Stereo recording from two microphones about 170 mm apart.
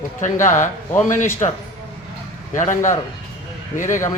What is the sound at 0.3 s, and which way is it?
Speech, 15° left (ahead or behind).